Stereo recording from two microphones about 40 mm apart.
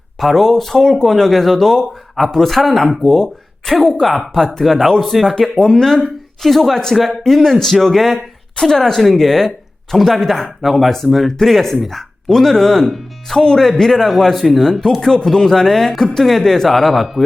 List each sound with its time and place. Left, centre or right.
0.2 s speech: centre
3.0 s speech: centre
4.6 s speech: centre